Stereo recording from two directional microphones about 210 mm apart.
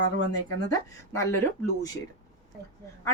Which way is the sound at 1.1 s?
10° left (ahead or behind).